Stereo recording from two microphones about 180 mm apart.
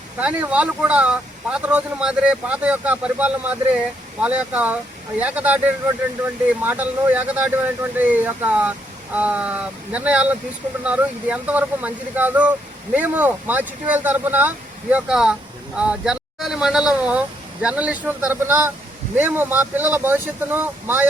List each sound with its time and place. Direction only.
0.2 s speech: 5° right (ahead or behind)